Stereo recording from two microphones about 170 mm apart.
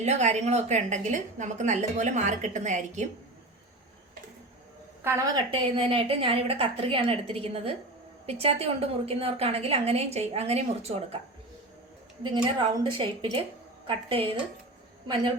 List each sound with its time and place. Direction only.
0.0 s a woman's voice: 40° right (ahead or behind)
5.0 s a woman's voice: 20° right (ahead or behind); by 11.2 s 35° right (ahead or behind)
12.3 s a woman's voice: 30° right (ahead or behind)